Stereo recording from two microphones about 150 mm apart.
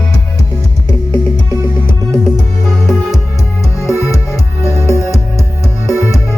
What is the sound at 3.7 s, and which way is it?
Music, 20° left (ahead or behind).